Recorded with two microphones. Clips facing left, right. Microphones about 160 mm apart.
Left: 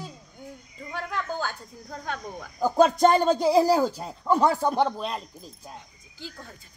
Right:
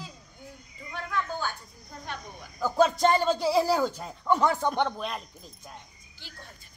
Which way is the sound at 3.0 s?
45° left (ahead or behind).